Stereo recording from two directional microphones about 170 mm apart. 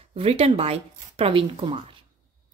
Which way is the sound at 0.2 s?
35° right (ahead or behind).